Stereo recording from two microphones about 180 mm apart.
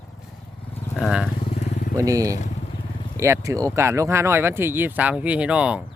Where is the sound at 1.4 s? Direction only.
35° left (ahead or behind).